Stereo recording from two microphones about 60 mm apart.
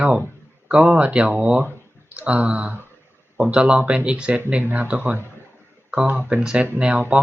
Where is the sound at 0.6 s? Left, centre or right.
Right.